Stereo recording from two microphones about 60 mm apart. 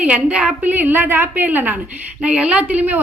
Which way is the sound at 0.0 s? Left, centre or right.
Right.